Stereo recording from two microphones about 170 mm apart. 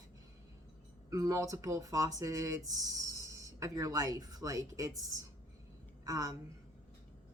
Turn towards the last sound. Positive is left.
turn(degrees=-20)  # may be behind; listen again after turning